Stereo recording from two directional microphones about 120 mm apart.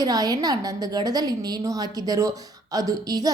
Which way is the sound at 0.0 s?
30° right (ahead or behind).